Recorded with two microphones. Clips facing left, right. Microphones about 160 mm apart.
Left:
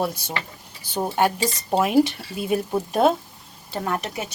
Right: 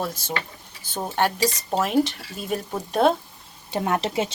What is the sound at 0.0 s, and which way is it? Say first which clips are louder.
Speech: left 2 dB; 10° left (ahead or behind).